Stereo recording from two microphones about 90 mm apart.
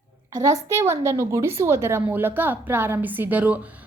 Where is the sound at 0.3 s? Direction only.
35° right (ahead or behind).